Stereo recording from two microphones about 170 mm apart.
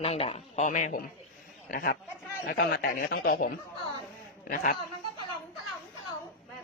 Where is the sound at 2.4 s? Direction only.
70° left (ahead or behind); by 3.5 s 55° left (ahead or behind).